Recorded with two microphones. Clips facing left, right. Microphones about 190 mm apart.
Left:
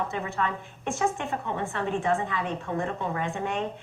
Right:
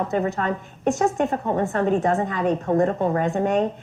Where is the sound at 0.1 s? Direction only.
40° right (ahead or behind).